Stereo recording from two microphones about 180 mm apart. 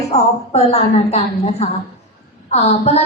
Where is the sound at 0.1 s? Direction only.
35° left (ahead or behind).